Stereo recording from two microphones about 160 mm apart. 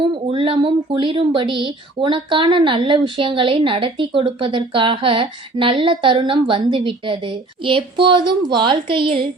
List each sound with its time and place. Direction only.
0.0 s speech: 35° right (ahead or behind)